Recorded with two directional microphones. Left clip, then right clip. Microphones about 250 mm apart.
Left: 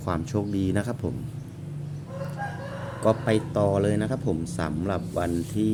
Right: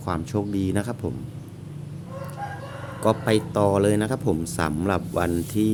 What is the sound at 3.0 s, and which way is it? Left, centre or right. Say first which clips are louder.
Speech: right 2 dB; centre.